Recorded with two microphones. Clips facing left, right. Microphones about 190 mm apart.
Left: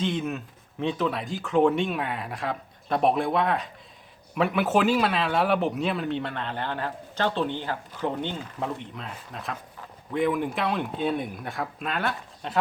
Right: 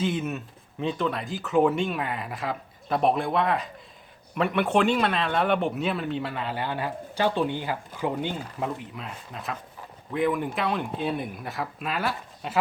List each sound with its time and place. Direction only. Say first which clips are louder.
0.0 s speech: even; 5° right (ahead or behind)